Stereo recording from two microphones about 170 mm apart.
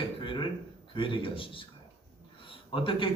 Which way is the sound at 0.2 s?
30° left (ahead or behind).